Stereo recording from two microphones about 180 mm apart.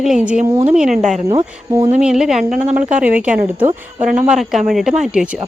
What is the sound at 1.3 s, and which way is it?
Speech, 20° right (ahead or behind).